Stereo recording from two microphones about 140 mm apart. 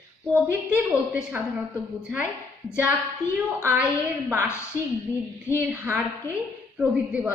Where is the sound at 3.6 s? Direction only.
15° right (ahead or behind).